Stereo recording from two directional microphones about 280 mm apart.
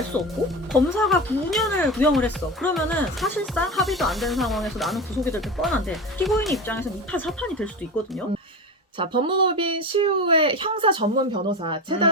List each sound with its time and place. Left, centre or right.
0.1 s speech: centre
9.0 s speech: centre